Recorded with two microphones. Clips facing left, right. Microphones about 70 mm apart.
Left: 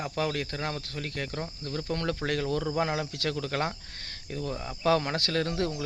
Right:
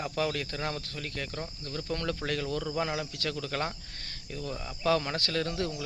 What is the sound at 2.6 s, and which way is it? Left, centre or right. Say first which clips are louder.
Speech: left 3 dB; left.